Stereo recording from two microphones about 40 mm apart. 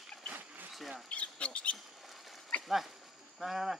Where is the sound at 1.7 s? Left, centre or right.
Centre.